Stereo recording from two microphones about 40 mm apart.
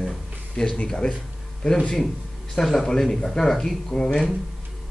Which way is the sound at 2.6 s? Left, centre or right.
Centre.